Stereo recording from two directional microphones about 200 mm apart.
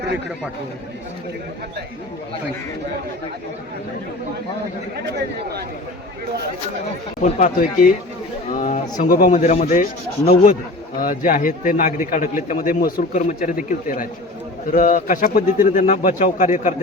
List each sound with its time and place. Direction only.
7.2 s a man's voice: 40° left (ahead or behind)